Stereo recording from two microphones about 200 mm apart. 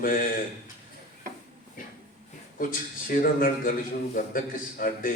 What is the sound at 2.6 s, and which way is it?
A man's voice, 45° left (ahead or behind).